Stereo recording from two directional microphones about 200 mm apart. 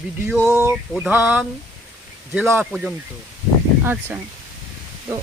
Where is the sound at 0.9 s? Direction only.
5° right (ahead or behind).